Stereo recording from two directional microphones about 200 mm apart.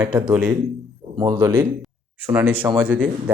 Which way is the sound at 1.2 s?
15° right (ahead or behind).